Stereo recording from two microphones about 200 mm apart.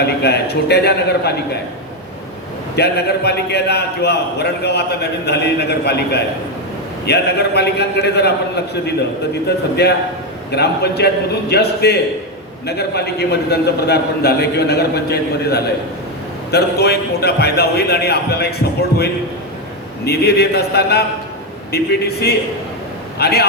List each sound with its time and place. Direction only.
0.0 s a man's voice: 55° left (ahead or behind)
2.7 s a man's voice: 55° left (ahead or behind)
9.8 s a man's voice: 55° left (ahead or behind)